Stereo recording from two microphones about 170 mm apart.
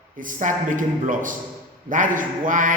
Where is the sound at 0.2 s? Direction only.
50° right (ahead or behind).